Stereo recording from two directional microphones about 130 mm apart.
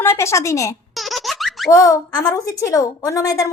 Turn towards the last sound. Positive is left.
turn(degrees=25)  # may be behind; listen again after turning